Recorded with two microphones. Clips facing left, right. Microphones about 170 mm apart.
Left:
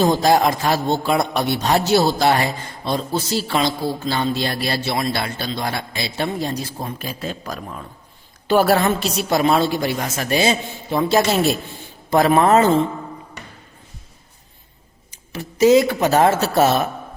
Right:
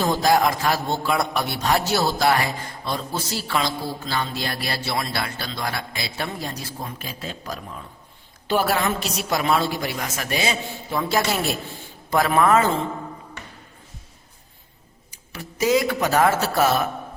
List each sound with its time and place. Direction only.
0.0 s a man's voice: 25° left (ahead or behind)
7.0 s a man's voice: 50° left (ahead or behind); by 12.6 s 25° left (ahead or behind)
15.1 s speech: 25° left (ahead or behind)